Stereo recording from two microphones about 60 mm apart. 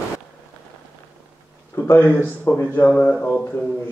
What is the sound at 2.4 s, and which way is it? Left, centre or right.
Speech, left.